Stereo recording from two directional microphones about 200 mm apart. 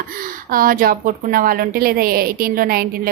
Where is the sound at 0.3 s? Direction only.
45° right (ahead or behind).